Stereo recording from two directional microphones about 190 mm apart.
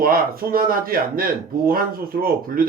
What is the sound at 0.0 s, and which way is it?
Speech, 50° right (ahead or behind).